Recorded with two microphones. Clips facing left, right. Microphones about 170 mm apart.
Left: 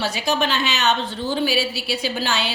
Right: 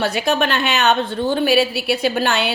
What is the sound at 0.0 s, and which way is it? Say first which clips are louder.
A woman's voice: right 4 dB; 60° right (ahead or behind).